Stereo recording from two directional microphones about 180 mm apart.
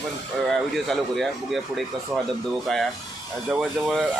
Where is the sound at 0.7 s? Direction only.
Centre (ahead or behind).